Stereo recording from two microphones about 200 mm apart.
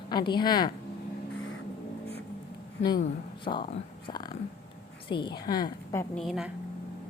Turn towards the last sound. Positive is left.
turn(degrees=0)  # may be behind; listen again after turning